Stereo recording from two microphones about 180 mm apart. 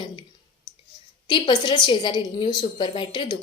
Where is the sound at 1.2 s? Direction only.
25° left (ahead or behind).